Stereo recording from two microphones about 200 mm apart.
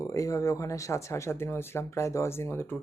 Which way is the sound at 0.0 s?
15° left (ahead or behind).